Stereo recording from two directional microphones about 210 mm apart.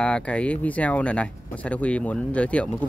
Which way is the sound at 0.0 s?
5° left (ahead or behind).